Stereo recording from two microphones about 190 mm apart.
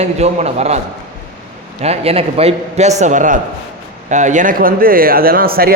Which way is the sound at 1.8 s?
35° right (ahead or behind).